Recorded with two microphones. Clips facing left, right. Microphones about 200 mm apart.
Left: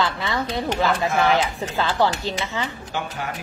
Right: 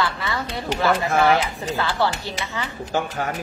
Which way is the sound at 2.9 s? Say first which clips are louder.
Right 5 dB; 45° right (ahead or behind).